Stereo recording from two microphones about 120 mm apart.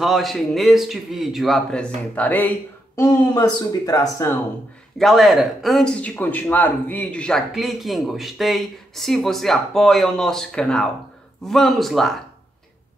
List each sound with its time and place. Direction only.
0.0 s speech: centre (ahead or behind)
3.0 s speech: 30° left (ahead or behind)
4.9 s speech: centre (ahead or behind)